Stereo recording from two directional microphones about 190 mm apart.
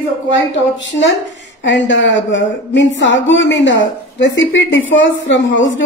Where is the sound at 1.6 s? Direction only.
70° left (ahead or behind).